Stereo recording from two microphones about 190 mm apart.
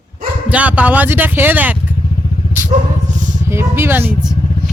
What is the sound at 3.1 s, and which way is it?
Vehicle, 40° right (ahead or behind).